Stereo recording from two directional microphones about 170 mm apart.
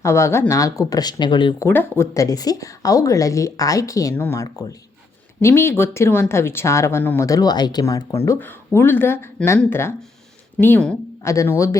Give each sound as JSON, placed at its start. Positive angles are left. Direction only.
{"t": 0.0, "sound": "a woman's voice", "side_deg": 15}
{"t": 1.6, "sound": "a woman's voice", "side_deg": 10}